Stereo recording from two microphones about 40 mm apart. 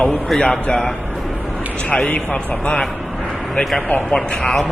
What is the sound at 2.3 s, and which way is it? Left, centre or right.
Speech, left.